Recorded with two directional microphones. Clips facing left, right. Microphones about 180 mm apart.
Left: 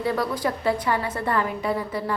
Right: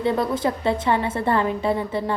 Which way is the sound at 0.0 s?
25° right (ahead or behind).